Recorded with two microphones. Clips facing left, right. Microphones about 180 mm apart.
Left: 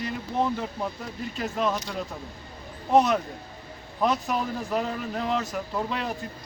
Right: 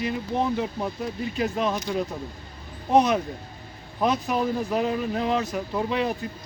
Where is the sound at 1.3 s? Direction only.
10° right (ahead or behind).